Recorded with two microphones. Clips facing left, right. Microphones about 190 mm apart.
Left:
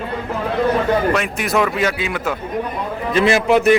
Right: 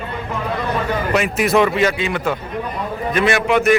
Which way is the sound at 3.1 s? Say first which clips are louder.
Left 3 dB; 25° left (ahead or behind).